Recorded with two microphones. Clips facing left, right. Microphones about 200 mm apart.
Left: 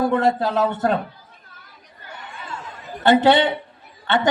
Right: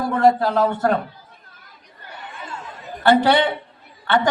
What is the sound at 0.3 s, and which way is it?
Speech, 20° left (ahead or behind).